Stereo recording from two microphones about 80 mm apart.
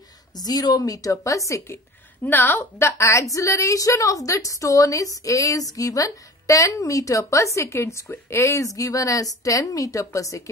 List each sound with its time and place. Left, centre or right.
0.4 s a woman's voice: left
2.2 s a woman's voice: left